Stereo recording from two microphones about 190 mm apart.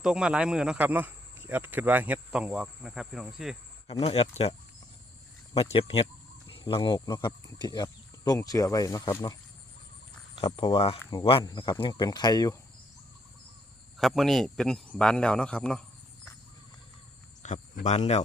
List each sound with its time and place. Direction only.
0.0 s speech: 5° right (ahead or behind)
4.0 s speech: 30° left (ahead or behind)
5.5 s speech: 30° left (ahead or behind)
14.0 s speech: centre (ahead or behind)
17.4 s speech: 40° left (ahead or behind)